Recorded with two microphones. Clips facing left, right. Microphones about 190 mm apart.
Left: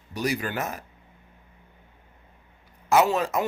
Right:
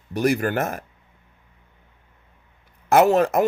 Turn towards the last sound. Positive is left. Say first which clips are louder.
# right 5 dB
turn(degrees=-50)  # may be behind; listen again after turning